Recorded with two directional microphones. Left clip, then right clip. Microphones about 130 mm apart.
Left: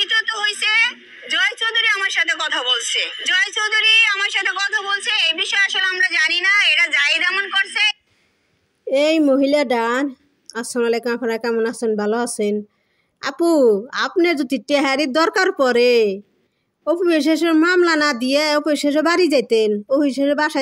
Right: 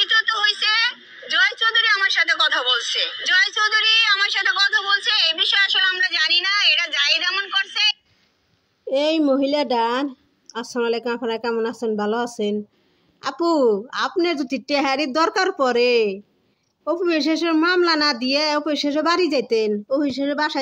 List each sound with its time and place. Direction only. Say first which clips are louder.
0.0 s a woman's voice: right 1 dB; 20° left (ahead or behind)
8.8 s a woman's voice: left 3 dB; 40° left (ahead or behind)